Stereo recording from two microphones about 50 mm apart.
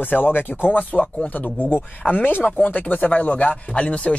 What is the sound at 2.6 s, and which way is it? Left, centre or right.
Chopping, left.